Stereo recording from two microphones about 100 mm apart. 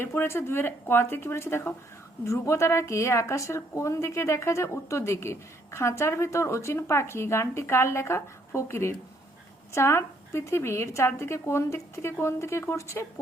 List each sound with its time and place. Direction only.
0.0 s a woman's voice: 25° left (ahead or behind)